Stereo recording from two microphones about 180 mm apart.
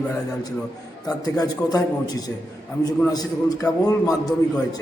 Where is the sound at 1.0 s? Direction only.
20° left (ahead or behind).